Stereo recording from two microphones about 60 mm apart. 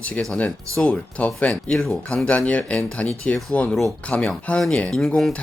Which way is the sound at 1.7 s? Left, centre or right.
Centre.